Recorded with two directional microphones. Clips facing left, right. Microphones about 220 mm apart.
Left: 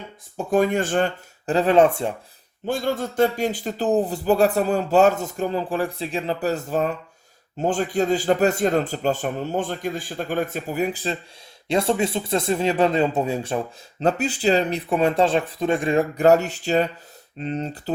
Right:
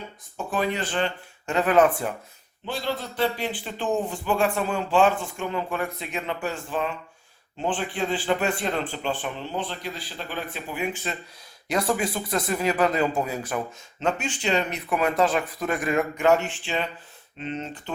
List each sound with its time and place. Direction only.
0.5 s speech: 45° left (ahead or behind)
1.5 s speech: 30° left (ahead or behind)
2.6 s a man's voice: 45° left (ahead or behind)